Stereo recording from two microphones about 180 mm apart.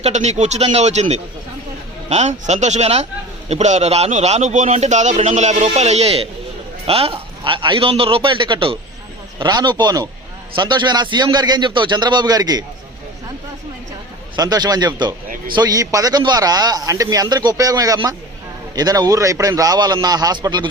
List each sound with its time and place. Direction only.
0.0 s a man's voice: 40° right (ahead or behind); by 12.6 s 20° right (ahead or behind)
14.3 s a man's voice: 20° right (ahead or behind)